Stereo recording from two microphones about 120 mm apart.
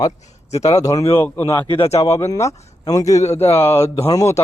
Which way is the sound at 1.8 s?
60° left (ahead or behind).